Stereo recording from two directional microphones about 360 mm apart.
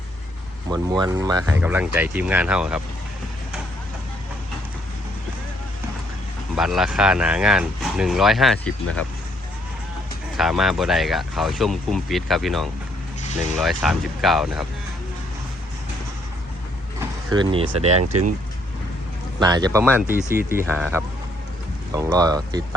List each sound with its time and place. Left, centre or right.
0.7 s speech: centre
6.6 s speech: centre
10.3 s speech: centre
17.0 s vehicle: centre
17.7 s speech: right
19.4 s speech: centre